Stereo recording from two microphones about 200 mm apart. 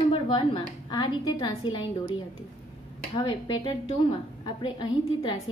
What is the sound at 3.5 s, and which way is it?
A woman's voice, 25° left (ahead or behind).